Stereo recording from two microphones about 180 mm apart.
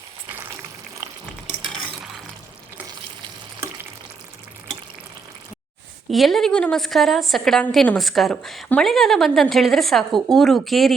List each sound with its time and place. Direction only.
6.1 s a woman's voice: centre (ahead or behind)